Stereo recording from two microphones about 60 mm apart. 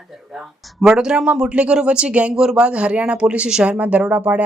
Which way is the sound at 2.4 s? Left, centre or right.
Centre.